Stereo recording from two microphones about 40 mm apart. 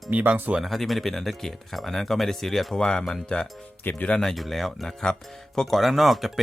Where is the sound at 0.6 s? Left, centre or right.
Centre.